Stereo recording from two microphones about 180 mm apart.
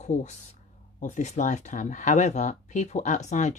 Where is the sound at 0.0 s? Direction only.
40° left (ahead or behind).